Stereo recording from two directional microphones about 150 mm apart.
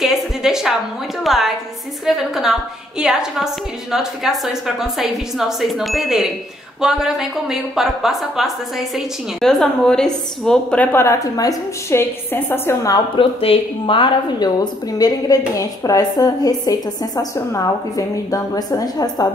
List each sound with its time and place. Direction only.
0.0 s music: 5° right (ahead or behind)
1.2 s a woman's voice: centre (ahead or behind); by 19.2 s 25° left (ahead or behind)